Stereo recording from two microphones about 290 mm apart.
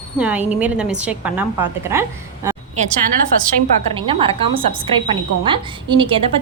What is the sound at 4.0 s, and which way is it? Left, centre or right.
A woman's voice, centre.